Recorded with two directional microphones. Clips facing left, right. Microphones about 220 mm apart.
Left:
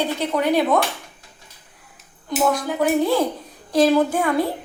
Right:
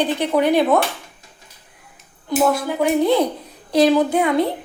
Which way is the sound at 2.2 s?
5° right (ahead or behind).